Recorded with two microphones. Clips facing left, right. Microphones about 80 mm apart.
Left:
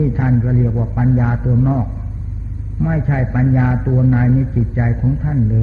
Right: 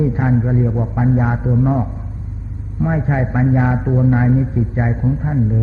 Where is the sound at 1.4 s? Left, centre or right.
Centre.